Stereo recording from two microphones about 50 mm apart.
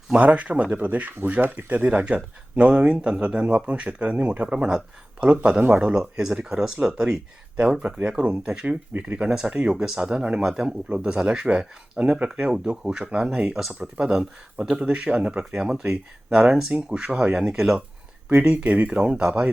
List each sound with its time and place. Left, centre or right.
0.1 s speech: right
5.4 s speech: right
5.8 s speech: centre
8.9 s speech: right
9.1 s speech: centre
10.8 s speech: right
18.3 s speech: right
18.9 s speech: centre